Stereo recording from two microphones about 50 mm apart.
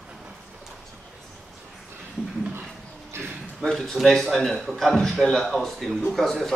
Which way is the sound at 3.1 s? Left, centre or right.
Right.